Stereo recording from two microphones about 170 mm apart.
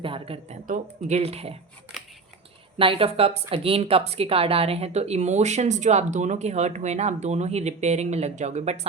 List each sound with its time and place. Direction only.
0.0 s speech: 30° right (ahead or behind)
0.7 s speech: 40° right (ahead or behind)
2.7 s speech: 30° right (ahead or behind)